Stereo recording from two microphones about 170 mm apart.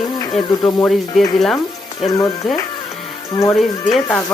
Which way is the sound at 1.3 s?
5° left (ahead or behind).